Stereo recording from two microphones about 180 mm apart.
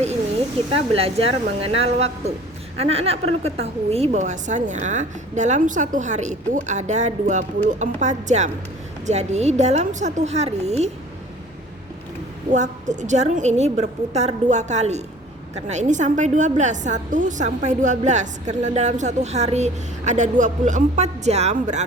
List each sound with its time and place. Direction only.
0.9 s a woman's voice: 30° right (ahead or behind)
12.5 s a woman's voice: 40° right (ahead or behind)